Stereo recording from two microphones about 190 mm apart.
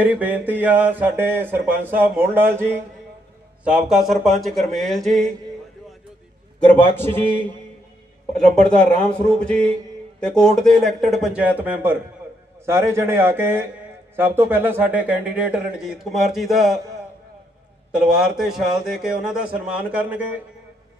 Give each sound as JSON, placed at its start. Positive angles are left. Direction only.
{"t": 0.0, "sound": "a man's voice", "side_deg": -10}
{"t": 6.6, "sound": "a man's voice", "side_deg": 10}
{"t": 8.4, "sound": "a man's voice", "side_deg": 5}
{"t": 17.9, "sound": "a man's voice", "side_deg": -5}